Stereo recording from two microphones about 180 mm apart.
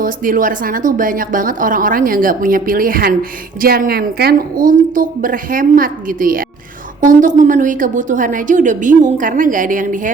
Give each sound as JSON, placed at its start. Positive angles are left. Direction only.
{"t": 0.0, "sound": "speech", "side_deg": -50}